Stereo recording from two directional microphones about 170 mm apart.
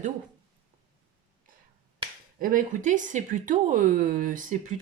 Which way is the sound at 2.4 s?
50° right (ahead or behind).